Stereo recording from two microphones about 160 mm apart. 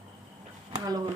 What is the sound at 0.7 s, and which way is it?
Speech, 25° right (ahead or behind).